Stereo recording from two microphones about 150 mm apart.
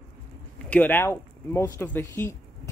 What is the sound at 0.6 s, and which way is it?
Speech, 10° left (ahead or behind).